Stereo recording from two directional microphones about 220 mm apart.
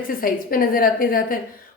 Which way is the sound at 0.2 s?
40° left (ahead or behind).